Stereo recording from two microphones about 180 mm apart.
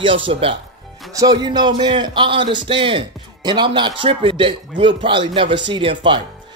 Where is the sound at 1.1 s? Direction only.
20° right (ahead or behind).